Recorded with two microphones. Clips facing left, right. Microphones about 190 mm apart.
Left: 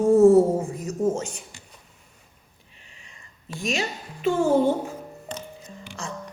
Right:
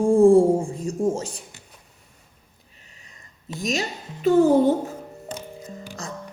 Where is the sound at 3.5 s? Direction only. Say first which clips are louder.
Right 1 dB; 40° right (ahead or behind).